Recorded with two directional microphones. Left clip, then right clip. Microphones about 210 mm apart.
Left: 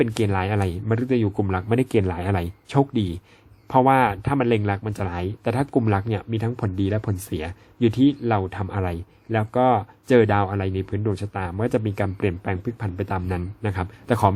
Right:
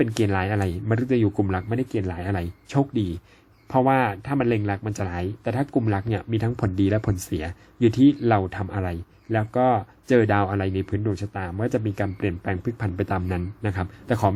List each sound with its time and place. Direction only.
0.0 s speech: 5° left (ahead or behind)
1.7 s speech: 25° left (ahead or behind)
12.6 s speech: centre (ahead or behind)